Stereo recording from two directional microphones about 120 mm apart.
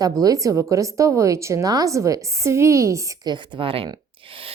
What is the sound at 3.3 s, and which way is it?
Speech, 40° right (ahead or behind).